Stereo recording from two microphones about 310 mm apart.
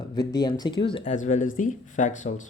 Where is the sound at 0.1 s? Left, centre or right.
Centre.